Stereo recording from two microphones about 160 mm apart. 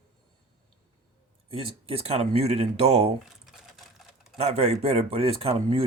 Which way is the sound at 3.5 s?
Centre (ahead or behind).